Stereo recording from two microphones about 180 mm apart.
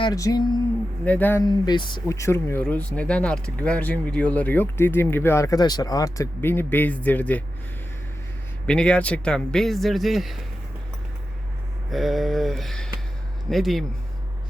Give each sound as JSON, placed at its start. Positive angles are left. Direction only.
{"t": 0.0, "sound": "speech", "side_deg": 20}
{"t": 1.0, "sound": "speech", "side_deg": 10}
{"t": 1.5, "sound": "speech", "side_deg": 25}
{"t": 8.6, "sound": "speech", "side_deg": 5}
{"t": 11.9, "sound": "speech", "side_deg": 0}